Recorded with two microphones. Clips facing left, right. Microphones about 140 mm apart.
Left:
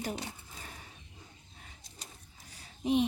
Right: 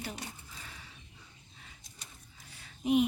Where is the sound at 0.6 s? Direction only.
45° left (ahead or behind).